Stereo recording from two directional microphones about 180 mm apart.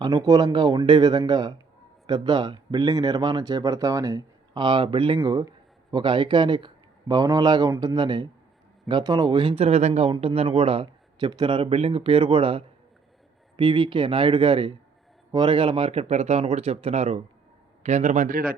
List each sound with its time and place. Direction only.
0.0 s a man's voice: 20° right (ahead or behind); by 18.5 s 50° right (ahead or behind)